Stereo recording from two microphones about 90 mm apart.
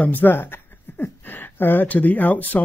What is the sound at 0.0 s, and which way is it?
Speech, 20° left (ahead or behind).